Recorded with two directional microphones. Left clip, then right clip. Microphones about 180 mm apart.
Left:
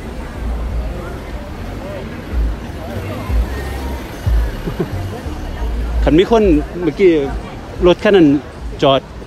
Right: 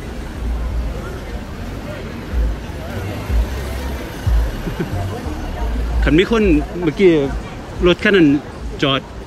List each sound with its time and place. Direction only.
6.0 s speech: 15° left (ahead or behind)
7.8 s speech: 15° left (ahead or behind)